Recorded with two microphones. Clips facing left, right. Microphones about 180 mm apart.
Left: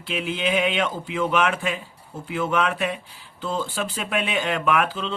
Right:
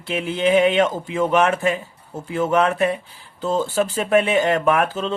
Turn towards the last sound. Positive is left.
turn(degrees=-45)  # may be behind; listen again after turning